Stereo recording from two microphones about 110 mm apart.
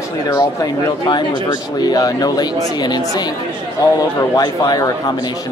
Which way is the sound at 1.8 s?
35° left (ahead or behind).